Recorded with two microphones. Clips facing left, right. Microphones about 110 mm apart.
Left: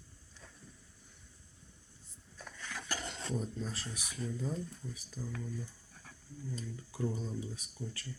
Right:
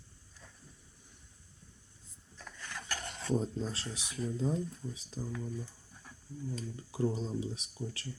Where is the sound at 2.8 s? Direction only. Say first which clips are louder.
Even; 15° left (ahead or behind).